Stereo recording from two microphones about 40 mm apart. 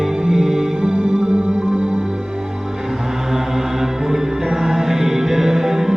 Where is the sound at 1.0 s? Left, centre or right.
Right.